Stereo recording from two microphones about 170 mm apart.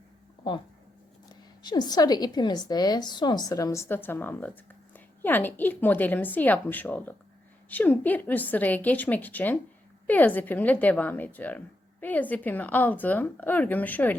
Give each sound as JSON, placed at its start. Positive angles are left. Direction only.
{"t": 0.4, "sound": "a woman's voice", "side_deg": 25}